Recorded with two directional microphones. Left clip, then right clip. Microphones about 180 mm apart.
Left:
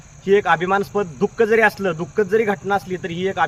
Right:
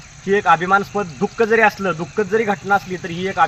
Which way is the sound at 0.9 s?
10° left (ahead or behind).